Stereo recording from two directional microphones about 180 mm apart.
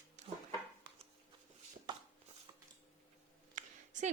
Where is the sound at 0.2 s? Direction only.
40° right (ahead or behind).